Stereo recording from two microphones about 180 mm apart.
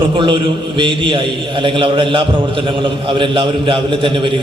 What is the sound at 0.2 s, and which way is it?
A man's voice, 25° right (ahead or behind).